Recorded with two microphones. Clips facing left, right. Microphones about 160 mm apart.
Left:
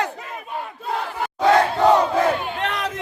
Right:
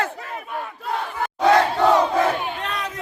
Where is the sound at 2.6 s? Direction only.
90° left.